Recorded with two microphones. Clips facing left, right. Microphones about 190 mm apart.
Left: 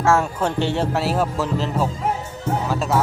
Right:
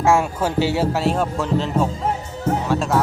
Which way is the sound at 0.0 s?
10° right (ahead or behind).